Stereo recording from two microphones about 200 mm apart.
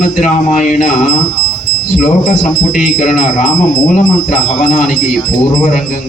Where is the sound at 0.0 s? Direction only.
40° left (ahead or behind).